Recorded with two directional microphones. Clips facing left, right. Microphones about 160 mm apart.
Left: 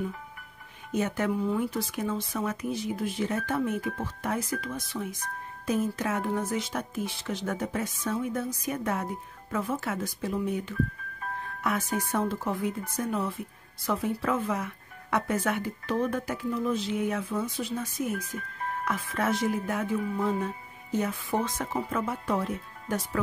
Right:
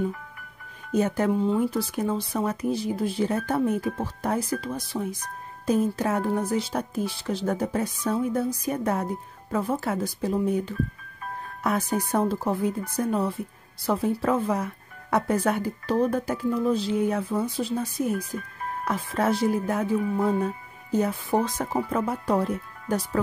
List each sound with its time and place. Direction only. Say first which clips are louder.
0.9 s speech: right 5 dB; 35° right (ahead or behind)